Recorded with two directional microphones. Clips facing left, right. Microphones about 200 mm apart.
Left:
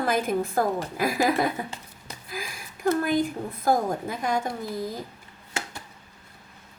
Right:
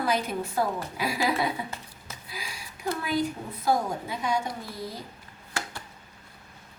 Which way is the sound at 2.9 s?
50° left (ahead or behind).